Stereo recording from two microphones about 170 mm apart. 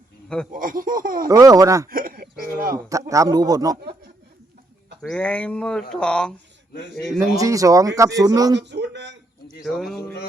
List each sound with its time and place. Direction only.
0.5 s speech: 55° right (ahead or behind)
1.3 s speech: 20° right (ahead or behind)
1.9 s a sound: 55° right (ahead or behind)
2.7 s speech: 20° right (ahead or behind)
5.0 s speech: 5° left (ahead or behind)
7.2 s speech: 20° right (ahead or behind)
8.5 s a sound: 90° right
9.6 s speech: centre (ahead or behind)